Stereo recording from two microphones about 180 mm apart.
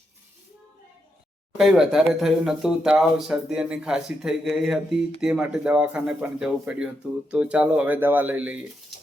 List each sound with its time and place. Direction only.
1.5 s speech: centre (ahead or behind)